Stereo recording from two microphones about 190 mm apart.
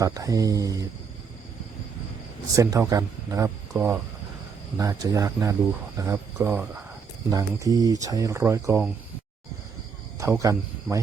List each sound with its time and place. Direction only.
0.0 s speech: 20° right (ahead or behind)
2.6 s speech: 15° right (ahead or behind)
10.2 s speech: 15° right (ahead or behind)